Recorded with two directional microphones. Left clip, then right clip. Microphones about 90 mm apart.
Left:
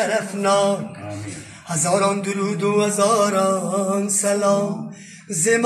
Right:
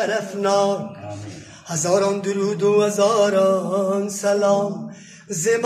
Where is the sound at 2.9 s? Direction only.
15° right (ahead or behind).